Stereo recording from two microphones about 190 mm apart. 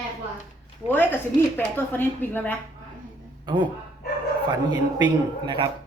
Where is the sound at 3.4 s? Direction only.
25° right (ahead or behind).